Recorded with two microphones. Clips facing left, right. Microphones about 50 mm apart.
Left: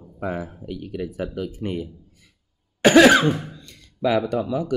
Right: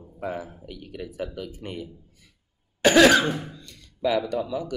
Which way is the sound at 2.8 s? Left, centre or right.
Left.